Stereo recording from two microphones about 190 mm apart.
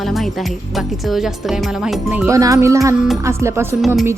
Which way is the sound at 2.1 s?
10° right (ahead or behind).